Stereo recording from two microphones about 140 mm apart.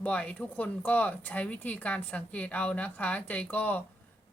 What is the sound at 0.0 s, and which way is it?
Speech, 10° left (ahead or behind).